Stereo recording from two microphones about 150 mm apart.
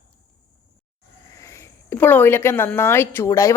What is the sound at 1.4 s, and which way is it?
A woman's voice, 20° left (ahead or behind).